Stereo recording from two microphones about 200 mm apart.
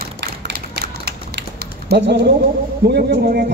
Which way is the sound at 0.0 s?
50° right (ahead or behind).